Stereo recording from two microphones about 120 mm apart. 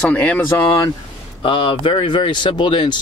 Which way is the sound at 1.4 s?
40° left (ahead or behind).